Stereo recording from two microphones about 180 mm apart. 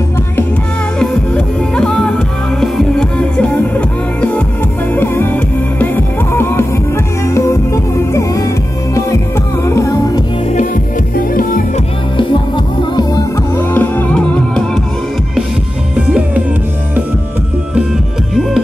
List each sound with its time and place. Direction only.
0.9 s music: 5° left (ahead or behind)
9.7 s music: 15° left (ahead or behind)
11.1 s music: 50° left (ahead or behind)
13.6 s music: 10° left (ahead or behind)
16.1 s music: 5° right (ahead or behind)